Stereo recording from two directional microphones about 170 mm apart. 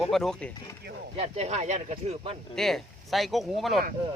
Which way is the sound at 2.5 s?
Centre (ahead or behind).